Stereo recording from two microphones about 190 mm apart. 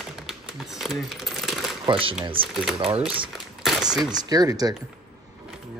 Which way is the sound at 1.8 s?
30° right (ahead or behind).